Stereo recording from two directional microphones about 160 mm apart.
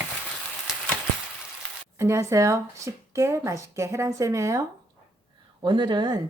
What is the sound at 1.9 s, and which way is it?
Speech, 15° right (ahead or behind).